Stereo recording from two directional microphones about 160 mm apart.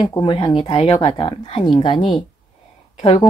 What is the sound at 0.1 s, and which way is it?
Speech, 25° left (ahead or behind).